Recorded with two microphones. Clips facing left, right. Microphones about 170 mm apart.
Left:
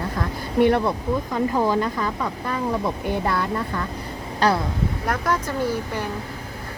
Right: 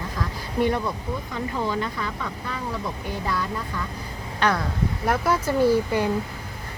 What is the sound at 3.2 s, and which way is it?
Speech, 60° left (ahead or behind).